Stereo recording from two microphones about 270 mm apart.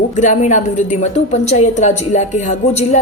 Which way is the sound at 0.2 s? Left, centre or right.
Left.